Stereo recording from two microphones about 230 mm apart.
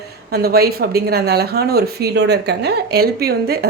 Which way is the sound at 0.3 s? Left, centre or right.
Right.